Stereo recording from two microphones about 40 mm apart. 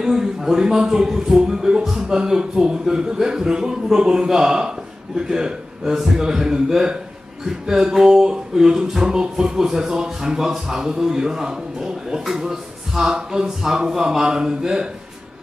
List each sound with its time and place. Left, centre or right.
0.0 s speech: centre